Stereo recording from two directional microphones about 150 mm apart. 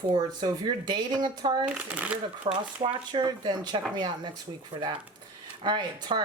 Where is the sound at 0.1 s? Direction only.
30° right (ahead or behind).